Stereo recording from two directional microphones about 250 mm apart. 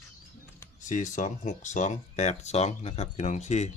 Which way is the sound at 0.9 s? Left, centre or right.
Left.